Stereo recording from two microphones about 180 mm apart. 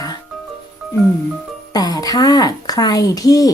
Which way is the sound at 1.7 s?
20° left (ahead or behind).